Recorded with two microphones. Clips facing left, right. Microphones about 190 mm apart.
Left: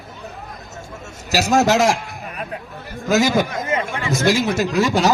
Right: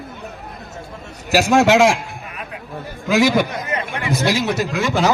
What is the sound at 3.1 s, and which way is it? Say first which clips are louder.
Speech: right 1 dB; 45° left (ahead or behind).